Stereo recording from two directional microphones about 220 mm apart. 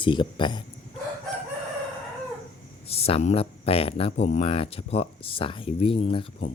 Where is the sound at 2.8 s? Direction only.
25° left (ahead or behind).